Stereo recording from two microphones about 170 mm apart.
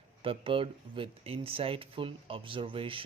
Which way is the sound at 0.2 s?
30° right (ahead or behind).